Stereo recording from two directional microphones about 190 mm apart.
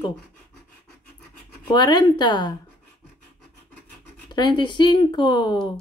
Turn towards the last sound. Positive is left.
turn(degrees=25)  # may be behind; listen again after turning